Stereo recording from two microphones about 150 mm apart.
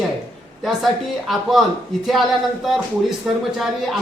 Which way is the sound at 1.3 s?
Centre (ahead or behind).